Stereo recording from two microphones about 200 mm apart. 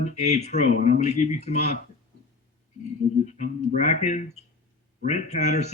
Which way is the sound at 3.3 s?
40° left (ahead or behind).